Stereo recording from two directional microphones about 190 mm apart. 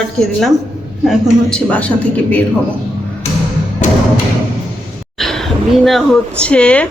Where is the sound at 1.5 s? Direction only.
5° left (ahead or behind).